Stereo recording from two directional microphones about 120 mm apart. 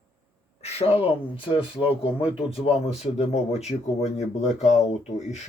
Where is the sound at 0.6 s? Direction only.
55° left (ahead or behind).